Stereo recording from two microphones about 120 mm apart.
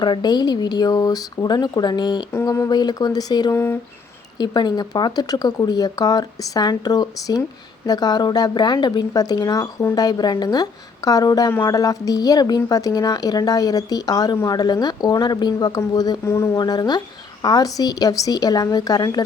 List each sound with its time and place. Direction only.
0.0 s speech: 35° left (ahead or behind)
3.5 s speech: 20° left (ahead or behind)
4.4 s speech: 35° left (ahead or behind)
16.6 s speech: 35° left (ahead or behind)